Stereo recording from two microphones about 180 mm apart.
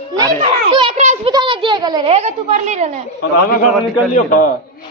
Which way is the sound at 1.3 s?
25° right (ahead or behind).